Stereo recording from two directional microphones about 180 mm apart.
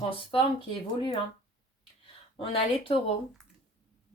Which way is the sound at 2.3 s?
30° left (ahead or behind).